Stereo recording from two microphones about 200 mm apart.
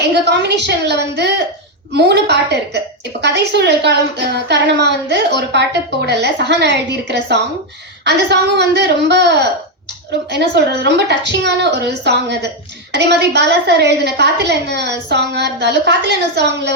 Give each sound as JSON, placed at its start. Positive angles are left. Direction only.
{"t": 0.1, "sound": "a woman's voice", "side_deg": -55}